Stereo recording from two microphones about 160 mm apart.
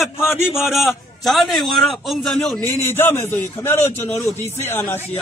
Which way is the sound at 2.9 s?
15° left (ahead or behind).